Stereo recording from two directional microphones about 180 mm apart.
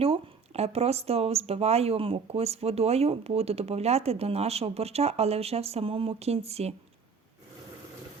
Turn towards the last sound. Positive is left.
turn(degrees=-35)  # may be behind; listen again after turning